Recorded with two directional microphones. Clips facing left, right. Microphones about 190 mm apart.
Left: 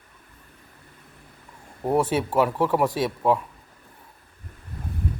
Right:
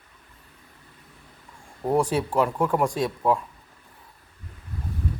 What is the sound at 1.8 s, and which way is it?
Speech, 5° left (ahead or behind).